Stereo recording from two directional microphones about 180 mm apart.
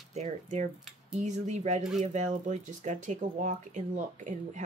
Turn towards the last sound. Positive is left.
turn(degrees=-45)  # may be behind; listen again after turning